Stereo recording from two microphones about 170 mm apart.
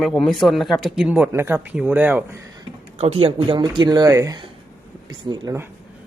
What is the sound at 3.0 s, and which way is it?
Speech, 35° right (ahead or behind).